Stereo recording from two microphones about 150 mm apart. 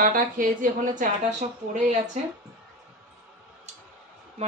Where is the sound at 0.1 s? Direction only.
65° right (ahead or behind).